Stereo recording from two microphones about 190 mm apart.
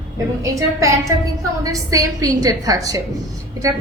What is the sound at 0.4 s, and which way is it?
A woman's voice, 15° right (ahead or behind).